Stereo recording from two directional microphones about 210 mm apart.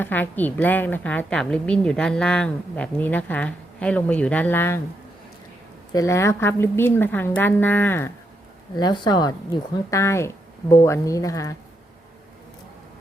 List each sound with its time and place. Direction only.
0.0 s a woman's voice: 10° left (ahead or behind)
5.9 s a woman's voice: 15° left (ahead or behind)
8.7 s a woman's voice: 20° left (ahead or behind)